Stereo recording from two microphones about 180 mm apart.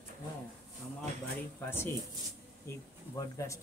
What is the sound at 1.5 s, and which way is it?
Speech, 15° left (ahead or behind).